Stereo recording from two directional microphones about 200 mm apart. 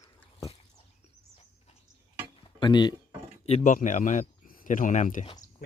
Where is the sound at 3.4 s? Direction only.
35° left (ahead or behind).